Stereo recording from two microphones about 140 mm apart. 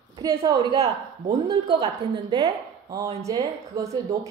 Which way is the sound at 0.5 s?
35° right (ahead or behind).